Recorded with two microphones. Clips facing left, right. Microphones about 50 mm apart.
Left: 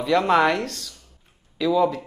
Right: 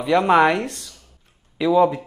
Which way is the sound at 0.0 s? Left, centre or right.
Centre.